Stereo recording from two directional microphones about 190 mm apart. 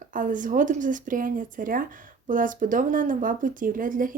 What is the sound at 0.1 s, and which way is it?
Speech, 45° right (ahead or behind).